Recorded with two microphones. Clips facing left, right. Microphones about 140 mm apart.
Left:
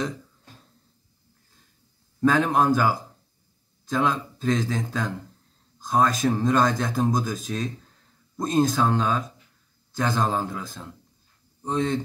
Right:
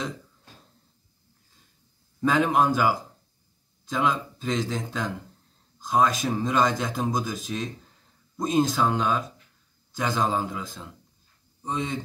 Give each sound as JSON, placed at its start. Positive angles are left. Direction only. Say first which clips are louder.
{"t": 2.2, "sound": "speech", "louder": "left 2 dB", "side_deg": -10}